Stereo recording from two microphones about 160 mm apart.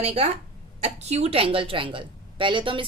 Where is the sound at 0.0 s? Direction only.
40° right (ahead or behind).